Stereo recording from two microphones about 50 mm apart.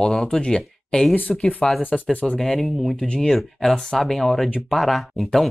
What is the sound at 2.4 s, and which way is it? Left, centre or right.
Speech, centre.